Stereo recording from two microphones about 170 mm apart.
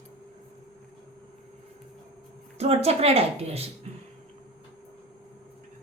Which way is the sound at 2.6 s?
35° right (ahead or behind).